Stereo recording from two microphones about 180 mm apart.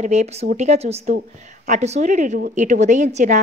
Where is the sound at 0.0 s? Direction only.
40° right (ahead or behind).